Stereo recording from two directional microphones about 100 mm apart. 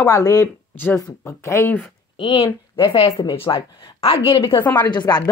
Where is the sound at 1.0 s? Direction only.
30° left (ahead or behind).